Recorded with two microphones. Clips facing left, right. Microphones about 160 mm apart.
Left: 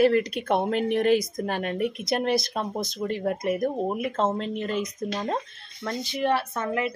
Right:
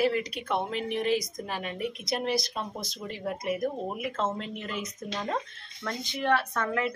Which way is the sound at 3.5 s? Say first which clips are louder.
Left 4 dB; 40° left (ahead or behind).